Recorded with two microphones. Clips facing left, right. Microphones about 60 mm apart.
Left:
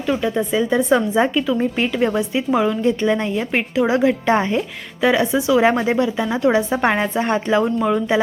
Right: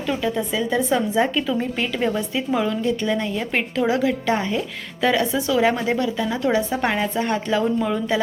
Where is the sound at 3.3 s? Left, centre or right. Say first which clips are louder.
Left 3 dB; centre.